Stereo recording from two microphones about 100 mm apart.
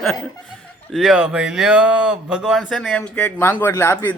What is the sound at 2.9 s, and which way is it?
Speech, 20° left (ahead or behind).